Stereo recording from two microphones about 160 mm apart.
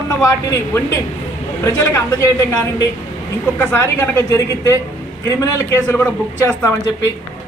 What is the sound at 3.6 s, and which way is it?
Speech, 15° left (ahead or behind).